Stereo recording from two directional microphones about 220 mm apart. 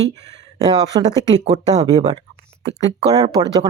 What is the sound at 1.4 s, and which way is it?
Speech, 30° right (ahead or behind).